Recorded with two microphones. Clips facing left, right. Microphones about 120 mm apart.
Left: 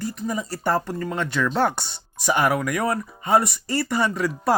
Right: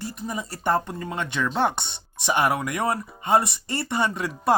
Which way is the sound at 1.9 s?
25° right (ahead or behind).